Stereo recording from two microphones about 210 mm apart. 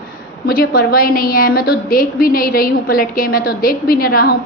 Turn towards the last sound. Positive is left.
turn(degrees=45)  # may be behind; listen again after turning